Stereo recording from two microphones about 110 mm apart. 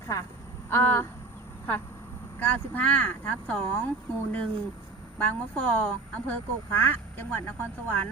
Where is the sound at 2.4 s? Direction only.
15° left (ahead or behind).